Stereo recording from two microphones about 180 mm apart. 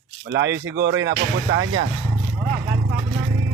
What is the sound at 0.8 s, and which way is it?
Speech, 85° right.